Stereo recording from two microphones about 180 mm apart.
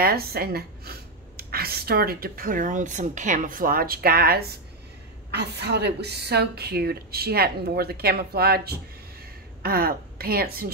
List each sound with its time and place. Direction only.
0.0 s a woman's voice: 60° right (ahead or behind)